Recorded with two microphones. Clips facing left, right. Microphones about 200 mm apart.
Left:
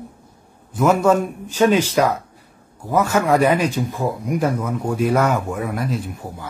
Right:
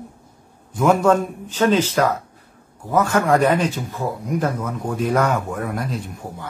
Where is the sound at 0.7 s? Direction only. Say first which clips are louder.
Even; 5° left (ahead or behind).